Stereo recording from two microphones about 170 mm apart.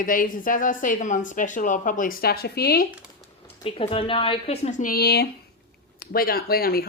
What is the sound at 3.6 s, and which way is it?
Speech, 35° left (ahead or behind).